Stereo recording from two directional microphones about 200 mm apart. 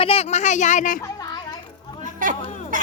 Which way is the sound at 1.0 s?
15° left (ahead or behind).